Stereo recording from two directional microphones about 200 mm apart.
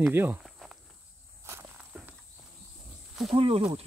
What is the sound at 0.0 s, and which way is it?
Walk, 10° right (ahead or behind).